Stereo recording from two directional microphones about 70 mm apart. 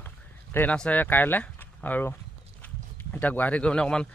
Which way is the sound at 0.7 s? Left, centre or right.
Centre.